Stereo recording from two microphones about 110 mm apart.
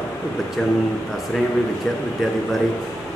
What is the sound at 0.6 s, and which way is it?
Speech, 5° left (ahead or behind).